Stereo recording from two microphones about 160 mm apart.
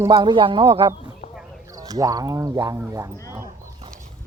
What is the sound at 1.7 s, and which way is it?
Speech, 20° right (ahead or behind).